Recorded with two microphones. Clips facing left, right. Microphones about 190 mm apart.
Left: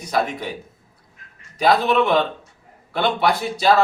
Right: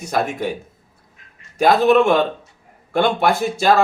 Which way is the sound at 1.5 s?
50° right (ahead or behind).